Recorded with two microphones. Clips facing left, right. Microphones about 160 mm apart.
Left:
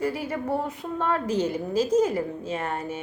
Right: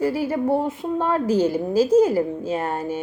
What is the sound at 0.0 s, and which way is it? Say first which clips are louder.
A woman's voice: right 6 dB; 30° right (ahead or behind).